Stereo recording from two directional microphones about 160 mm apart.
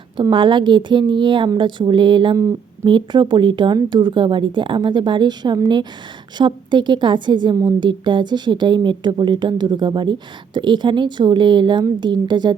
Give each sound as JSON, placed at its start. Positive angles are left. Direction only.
{"t": 0.2, "sound": "a woman's voice", "side_deg": -30}